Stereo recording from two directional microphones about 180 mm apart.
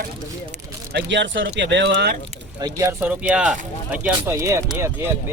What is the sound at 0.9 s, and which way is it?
Speech, 85° right.